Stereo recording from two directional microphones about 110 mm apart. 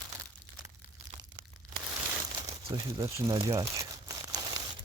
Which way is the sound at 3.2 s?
45° right (ahead or behind).